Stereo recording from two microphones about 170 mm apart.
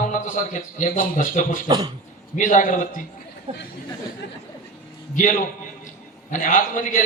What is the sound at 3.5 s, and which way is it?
Speech, 35° right (ahead or behind).